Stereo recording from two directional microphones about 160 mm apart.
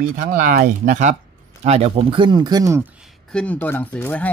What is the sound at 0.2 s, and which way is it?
Speech, 60° right (ahead or behind).